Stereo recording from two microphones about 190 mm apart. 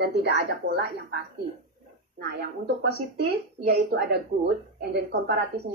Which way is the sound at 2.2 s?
60° right (ahead or behind).